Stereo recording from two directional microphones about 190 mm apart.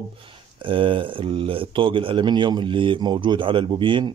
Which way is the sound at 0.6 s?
25° right (ahead or behind).